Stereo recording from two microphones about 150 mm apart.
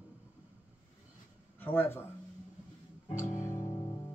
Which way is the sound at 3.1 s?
20° left (ahead or behind).